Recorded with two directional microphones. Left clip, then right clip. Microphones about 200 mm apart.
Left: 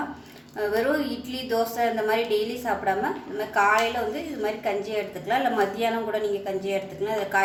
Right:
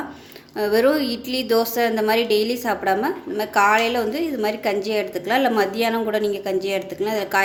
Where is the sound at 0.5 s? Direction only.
55° right (ahead or behind).